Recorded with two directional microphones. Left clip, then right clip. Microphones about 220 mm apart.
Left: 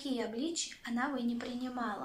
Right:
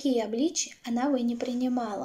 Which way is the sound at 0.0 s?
45° right (ahead or behind).